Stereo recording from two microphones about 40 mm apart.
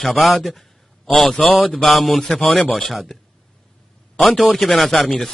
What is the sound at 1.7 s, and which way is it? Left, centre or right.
Speech, left.